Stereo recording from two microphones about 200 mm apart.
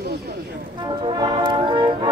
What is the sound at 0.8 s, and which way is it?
Music, 20° right (ahead or behind).